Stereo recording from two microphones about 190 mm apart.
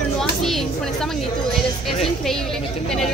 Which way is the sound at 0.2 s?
Centre (ahead or behind).